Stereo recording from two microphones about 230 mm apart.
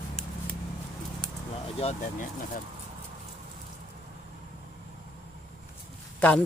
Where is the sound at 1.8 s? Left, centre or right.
Left.